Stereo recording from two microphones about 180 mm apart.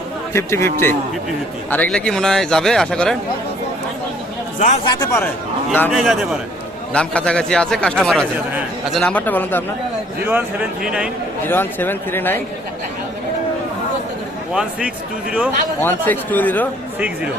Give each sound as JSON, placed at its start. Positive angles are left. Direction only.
{"t": 0.3, "sound": "a man's voice", "side_deg": 15}
{"t": 4.9, "sound": "speech", "side_deg": 20}
{"t": 5.9, "sound": "a man's voice", "side_deg": 0}
{"t": 10.2, "sound": "speech", "side_deg": -10}
{"t": 11.4, "sound": "a man's voice", "side_deg": 10}
{"t": 14.5, "sound": "speech", "side_deg": -5}
{"t": 15.8, "sound": "a man's voice", "side_deg": 10}